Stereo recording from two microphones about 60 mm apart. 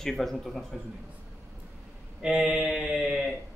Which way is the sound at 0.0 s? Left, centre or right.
Centre.